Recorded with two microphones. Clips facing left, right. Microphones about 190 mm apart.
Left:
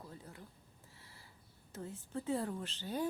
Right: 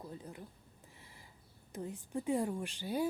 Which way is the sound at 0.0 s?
20° right (ahead or behind).